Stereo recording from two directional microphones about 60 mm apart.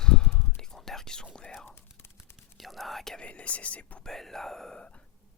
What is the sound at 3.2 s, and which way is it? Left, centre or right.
Speech, left.